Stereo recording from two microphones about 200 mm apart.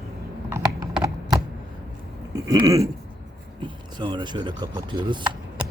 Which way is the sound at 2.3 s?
20° right (ahead or behind).